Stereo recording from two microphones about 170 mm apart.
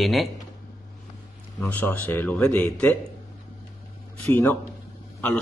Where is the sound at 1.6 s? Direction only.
10° left (ahead or behind).